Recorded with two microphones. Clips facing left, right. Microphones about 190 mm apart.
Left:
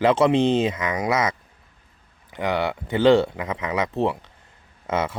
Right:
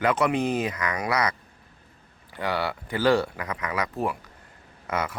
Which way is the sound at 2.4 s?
20° left (ahead or behind).